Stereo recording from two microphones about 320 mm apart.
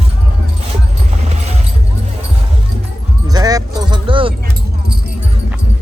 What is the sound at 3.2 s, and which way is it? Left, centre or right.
Music, centre.